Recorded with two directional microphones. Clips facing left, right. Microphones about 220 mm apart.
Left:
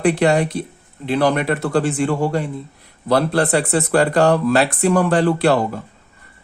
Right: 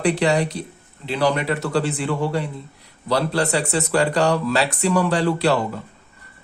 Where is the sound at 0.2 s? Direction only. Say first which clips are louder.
Left 3 dB; 55° left (ahead or behind).